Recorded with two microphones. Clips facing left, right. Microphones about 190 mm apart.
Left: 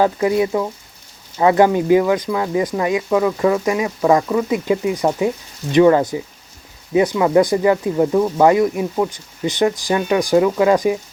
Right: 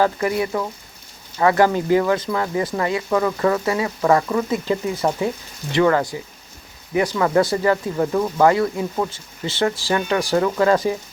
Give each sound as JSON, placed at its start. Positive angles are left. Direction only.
{"t": 0.0, "sound": "speech", "side_deg": 20}